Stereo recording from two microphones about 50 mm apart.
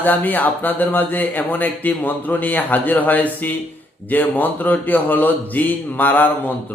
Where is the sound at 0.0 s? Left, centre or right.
Left.